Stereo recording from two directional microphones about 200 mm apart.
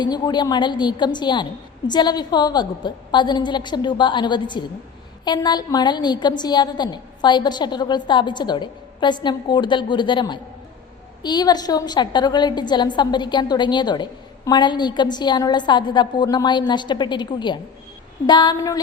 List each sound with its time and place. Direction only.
0.0 s a woman's voice: 20° left (ahead or behind)